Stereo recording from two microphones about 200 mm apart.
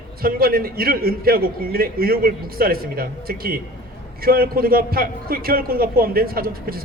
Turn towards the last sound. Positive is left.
turn(degrees=-50)  # may be behind; listen again after turning